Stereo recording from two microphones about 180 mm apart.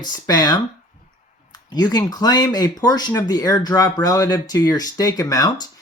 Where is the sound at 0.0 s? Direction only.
20° left (ahead or behind).